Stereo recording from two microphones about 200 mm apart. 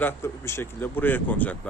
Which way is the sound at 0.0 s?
15° left (ahead or behind).